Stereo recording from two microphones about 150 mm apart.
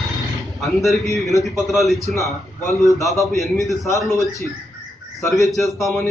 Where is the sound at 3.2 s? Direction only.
20° left (ahead or behind).